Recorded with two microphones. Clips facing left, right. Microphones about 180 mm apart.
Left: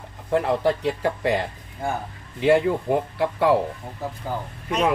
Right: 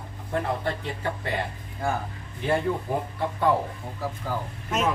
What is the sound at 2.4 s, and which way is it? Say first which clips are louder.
Speech: left 7 dB; 85° left.